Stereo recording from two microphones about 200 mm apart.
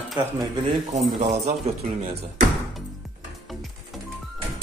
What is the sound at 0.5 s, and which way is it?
A man's voice, 25° right (ahead or behind).